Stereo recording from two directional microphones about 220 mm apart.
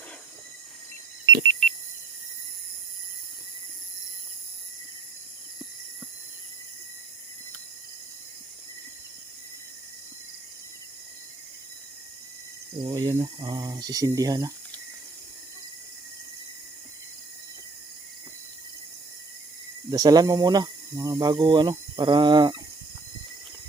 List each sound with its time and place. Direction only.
1.4 s a sound: 30° right (ahead or behind)
12.8 s speech: 20° right (ahead or behind)
19.9 s speech: 15° right (ahead or behind)